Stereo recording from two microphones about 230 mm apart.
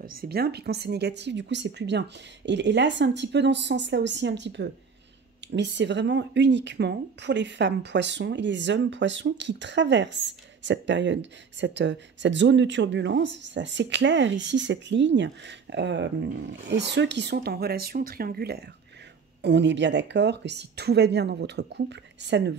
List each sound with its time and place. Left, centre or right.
0.0 s speech: right